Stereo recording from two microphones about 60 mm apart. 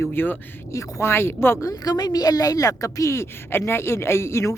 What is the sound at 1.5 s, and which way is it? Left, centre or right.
A woman's voice, left.